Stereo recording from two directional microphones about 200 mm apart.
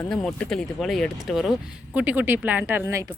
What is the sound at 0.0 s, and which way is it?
Speech, centre (ahead or behind).